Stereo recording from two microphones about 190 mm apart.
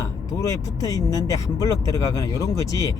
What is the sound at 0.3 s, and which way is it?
Speech, 15° left (ahead or behind).